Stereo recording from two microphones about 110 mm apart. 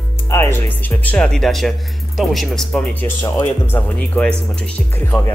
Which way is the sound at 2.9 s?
20° left (ahead or behind).